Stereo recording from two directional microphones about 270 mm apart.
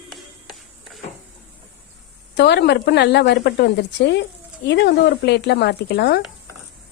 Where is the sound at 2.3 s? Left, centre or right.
Left.